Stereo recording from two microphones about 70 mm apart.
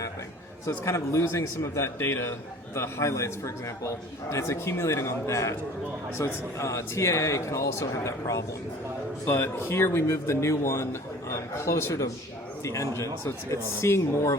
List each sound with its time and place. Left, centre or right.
0.9 s a man's voice: left